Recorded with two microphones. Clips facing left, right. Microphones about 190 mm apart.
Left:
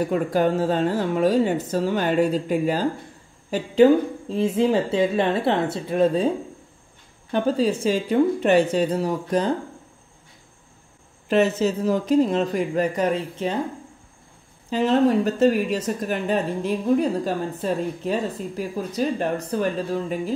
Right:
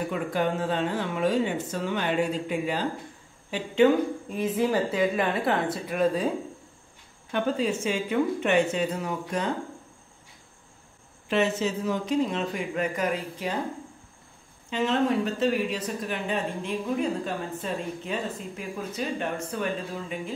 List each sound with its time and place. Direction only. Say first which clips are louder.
0.1 s a woman's voice: left 6 dB; 40° left (ahead or behind)
7.3 s speech: left 5 dB; 35° left (ahead or behind)
11.2 s speech: left 6 dB; 40° left (ahead or behind)
14.7 s speech: left 6 dB; 35° left (ahead or behind)